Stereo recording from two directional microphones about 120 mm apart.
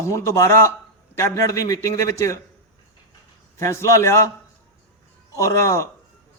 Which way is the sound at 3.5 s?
25° left (ahead or behind).